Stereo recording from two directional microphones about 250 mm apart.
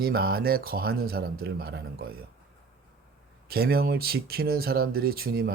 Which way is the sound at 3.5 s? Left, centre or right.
Right.